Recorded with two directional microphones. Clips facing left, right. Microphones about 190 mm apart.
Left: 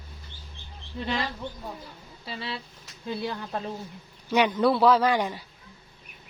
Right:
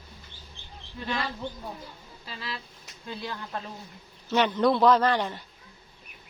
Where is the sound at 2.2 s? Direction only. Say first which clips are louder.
Left 4 dB; 30° left (ahead or behind).